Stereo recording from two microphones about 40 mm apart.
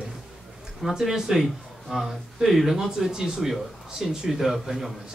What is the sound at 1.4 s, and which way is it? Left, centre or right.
A man's voice, centre.